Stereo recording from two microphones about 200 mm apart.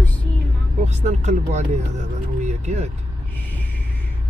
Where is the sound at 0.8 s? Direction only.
35° right (ahead or behind).